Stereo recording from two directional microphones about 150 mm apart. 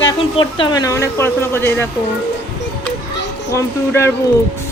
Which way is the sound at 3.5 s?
20° left (ahead or behind).